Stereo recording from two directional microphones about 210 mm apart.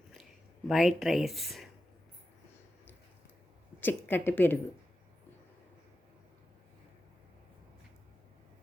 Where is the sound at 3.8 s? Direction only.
10° left (ahead or behind).